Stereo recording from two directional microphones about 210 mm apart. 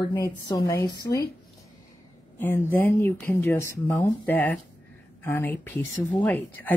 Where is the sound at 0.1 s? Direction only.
20° left (ahead or behind).